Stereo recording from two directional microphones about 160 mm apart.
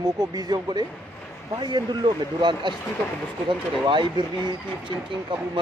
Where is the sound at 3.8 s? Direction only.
30° right (ahead or behind).